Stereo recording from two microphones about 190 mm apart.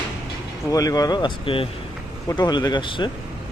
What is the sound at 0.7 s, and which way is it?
Speech, 20° left (ahead or behind).